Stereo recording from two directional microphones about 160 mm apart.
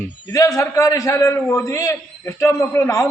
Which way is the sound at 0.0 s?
15° left (ahead or behind).